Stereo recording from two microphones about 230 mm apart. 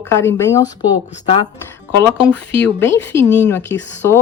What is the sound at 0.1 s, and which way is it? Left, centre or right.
Speech, centre.